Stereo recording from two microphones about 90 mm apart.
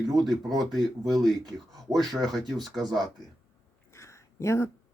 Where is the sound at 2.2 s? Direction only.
Centre (ahead or behind).